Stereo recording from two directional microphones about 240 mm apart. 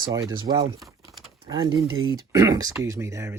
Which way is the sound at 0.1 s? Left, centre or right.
Centre.